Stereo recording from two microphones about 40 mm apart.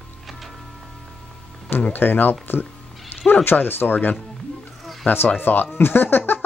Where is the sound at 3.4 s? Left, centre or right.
Left.